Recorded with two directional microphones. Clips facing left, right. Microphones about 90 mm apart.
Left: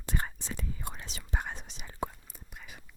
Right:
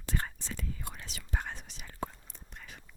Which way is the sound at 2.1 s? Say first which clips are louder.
Left 1 dB; 5° left (ahead or behind).